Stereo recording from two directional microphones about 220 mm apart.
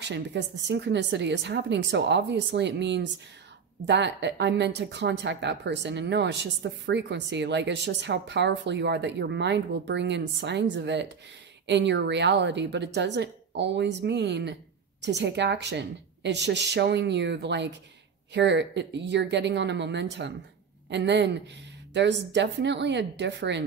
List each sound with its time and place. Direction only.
0.0 s a woman's voice: 55° right (ahead or behind)